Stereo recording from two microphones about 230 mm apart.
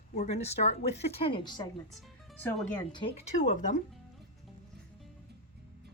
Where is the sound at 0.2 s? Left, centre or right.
Left.